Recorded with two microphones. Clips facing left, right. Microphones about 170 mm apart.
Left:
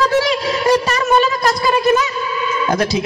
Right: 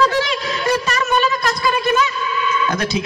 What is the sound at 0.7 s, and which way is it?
A man's voice, 30° left (ahead or behind).